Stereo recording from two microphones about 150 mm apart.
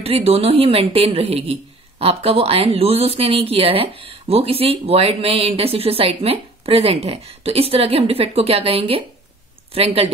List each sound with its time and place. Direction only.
0.0 s a woman's voice: 40° right (ahead or behind)